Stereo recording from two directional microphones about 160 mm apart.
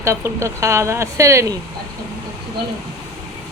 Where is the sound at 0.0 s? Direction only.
15° right (ahead or behind).